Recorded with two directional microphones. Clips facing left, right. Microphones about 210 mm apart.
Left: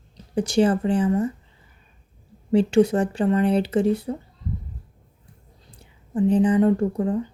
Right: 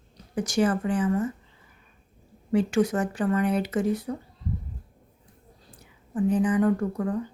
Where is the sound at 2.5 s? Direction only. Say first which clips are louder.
Left 5 dB; 30° left (ahead or behind).